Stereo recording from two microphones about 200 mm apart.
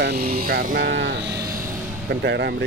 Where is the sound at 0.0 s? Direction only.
55° right (ahead or behind).